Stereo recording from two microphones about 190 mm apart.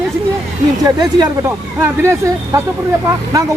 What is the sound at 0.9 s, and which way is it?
Speech, 20° right (ahead or behind).